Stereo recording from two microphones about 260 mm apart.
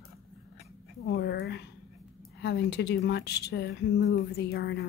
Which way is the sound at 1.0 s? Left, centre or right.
Left.